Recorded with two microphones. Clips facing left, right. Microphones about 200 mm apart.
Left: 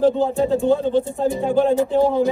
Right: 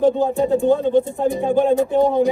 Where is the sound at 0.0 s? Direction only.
15° right (ahead or behind).